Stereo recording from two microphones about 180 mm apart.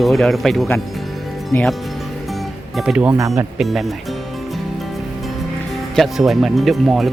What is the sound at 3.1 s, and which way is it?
Speech, 15° right (ahead or behind).